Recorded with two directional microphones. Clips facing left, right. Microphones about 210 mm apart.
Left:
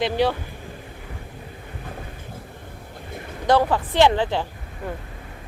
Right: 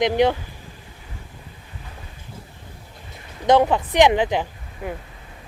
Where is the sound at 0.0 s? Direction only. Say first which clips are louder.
Right 3 dB; 20° right (ahead or behind).